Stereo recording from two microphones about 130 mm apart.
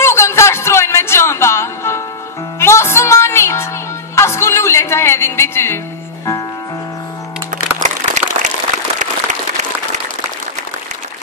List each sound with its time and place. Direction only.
0.0 s music: 20° left (ahead or behind)
7.5 s music: 70° right (ahead or behind)